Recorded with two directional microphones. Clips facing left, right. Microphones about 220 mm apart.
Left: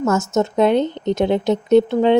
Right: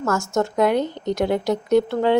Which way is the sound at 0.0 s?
20° left (ahead or behind).